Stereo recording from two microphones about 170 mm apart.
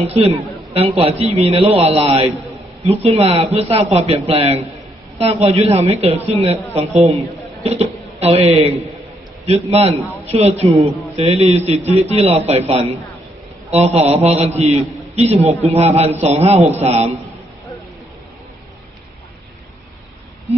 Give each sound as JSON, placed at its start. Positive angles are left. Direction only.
{"t": 0.0, "sound": "a man's voice", "side_deg": -35}